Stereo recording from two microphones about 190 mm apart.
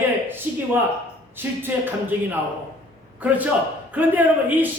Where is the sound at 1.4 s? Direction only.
10° right (ahead or behind).